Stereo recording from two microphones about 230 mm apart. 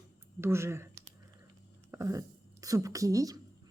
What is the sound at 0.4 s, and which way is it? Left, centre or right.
Speech, centre.